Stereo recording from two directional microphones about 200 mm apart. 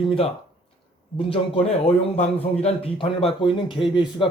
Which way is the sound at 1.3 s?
30° left (ahead or behind).